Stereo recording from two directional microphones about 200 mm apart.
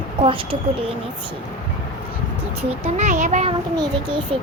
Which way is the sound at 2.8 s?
35° right (ahead or behind).